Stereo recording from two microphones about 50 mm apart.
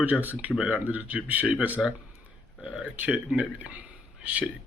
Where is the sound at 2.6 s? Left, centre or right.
Centre.